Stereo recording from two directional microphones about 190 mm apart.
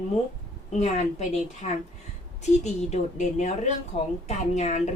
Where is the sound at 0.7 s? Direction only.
35° left (ahead or behind).